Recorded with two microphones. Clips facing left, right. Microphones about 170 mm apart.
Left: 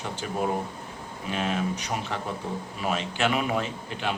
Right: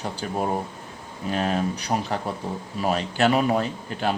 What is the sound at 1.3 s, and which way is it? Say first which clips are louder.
Speech: right 3 dB; 40° right (ahead or behind).